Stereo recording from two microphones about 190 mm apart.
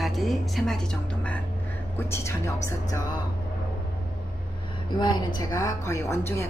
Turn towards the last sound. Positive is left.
turn(degrees=15)  # may be behind; listen again after turning